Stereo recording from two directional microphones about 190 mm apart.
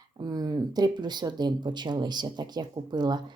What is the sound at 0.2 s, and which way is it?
Speech, 20° right (ahead or behind).